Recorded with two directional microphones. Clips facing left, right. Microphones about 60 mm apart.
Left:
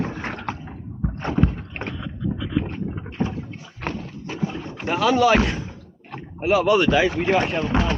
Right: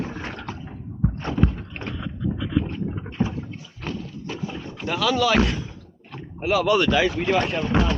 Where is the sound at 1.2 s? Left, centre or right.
Left.